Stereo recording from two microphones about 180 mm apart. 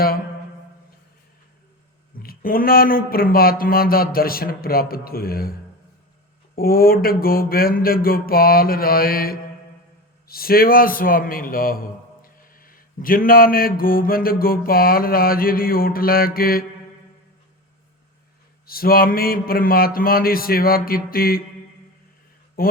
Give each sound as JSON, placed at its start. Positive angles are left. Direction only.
{"t": 2.1, "sound": "speech", "side_deg": 55}
{"t": 6.6, "sound": "a man's voice", "side_deg": 55}
{"t": 18.6, "sound": "speech", "side_deg": 55}
{"t": 22.6, "sound": "speech", "side_deg": 55}